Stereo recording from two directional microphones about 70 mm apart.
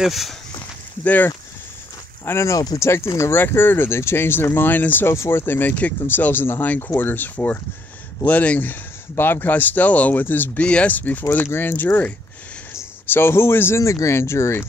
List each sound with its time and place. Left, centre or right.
0.0 s speech: centre
1.0 s speech: left
2.2 s speech: left
3.3 s speech: left
5.1 s speech: left